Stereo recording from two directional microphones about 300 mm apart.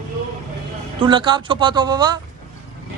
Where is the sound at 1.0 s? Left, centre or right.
Centre.